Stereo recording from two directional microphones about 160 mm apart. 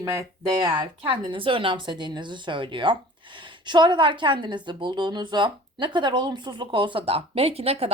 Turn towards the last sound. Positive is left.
turn(degrees=-40)  # may be behind; listen again after turning